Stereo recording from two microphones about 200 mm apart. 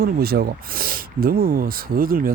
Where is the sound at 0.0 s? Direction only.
50° right (ahead or behind).